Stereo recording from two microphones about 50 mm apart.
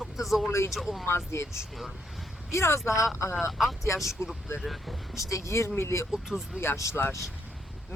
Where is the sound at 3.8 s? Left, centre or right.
Left.